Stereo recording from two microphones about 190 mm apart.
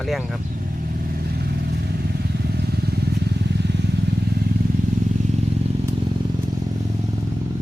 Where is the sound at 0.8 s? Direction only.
50° right (ahead or behind).